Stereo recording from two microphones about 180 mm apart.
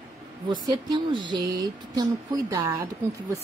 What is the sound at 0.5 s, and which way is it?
Speech, 25° right (ahead or behind).